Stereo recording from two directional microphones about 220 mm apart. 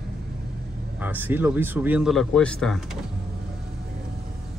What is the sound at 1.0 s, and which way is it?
Speech, 10° right (ahead or behind).